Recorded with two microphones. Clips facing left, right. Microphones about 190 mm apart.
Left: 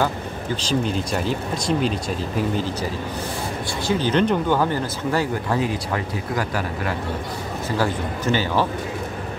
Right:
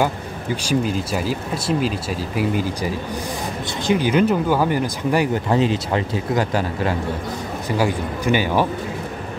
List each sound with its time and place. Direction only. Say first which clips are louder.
0.6 s speech: right 2 dB; 10° right (ahead or behind)